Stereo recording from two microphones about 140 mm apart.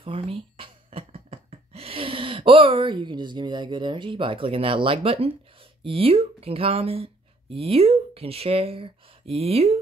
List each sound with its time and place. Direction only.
0.0 s speech: 40° right (ahead or behind)